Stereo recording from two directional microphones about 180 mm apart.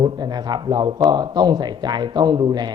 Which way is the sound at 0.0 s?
20° right (ahead or behind).